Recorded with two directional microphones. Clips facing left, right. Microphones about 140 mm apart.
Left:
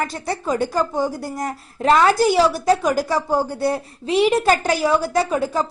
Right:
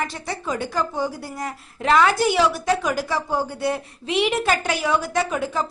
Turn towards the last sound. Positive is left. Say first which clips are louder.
# left 4 dB
turn(degrees=35)  # may be behind; listen again after turning